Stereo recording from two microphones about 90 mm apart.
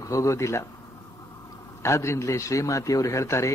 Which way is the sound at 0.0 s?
35° left (ahead or behind).